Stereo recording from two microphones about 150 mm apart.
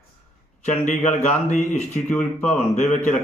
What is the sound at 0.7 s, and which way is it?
Speech, 55° left (ahead or behind).